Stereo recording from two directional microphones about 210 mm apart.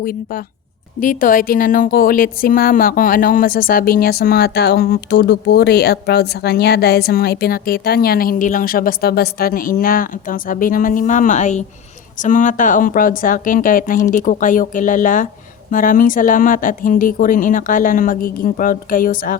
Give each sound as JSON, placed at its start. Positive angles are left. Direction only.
{"t": 0.0, "sound": "speech", "side_deg": 45}